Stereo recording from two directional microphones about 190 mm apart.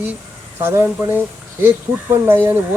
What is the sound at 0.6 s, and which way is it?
Speech, 10° right (ahead or behind).